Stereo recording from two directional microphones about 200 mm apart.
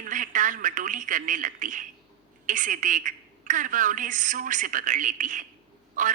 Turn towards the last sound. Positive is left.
turn(degrees=-40)  # may be behind; listen again after turning